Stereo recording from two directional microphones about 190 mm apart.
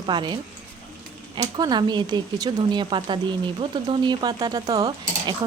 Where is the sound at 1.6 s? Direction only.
20° right (ahead or behind).